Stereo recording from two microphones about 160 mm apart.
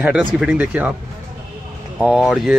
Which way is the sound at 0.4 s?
5° right (ahead or behind).